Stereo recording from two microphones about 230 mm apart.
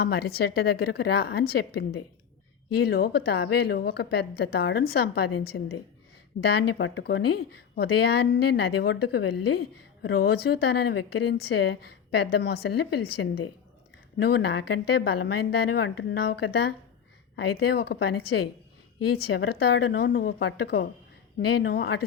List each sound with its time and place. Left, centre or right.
0.0 s a woman's voice: left